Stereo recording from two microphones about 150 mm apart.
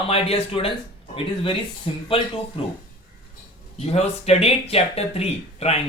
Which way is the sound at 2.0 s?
35° left (ahead or behind).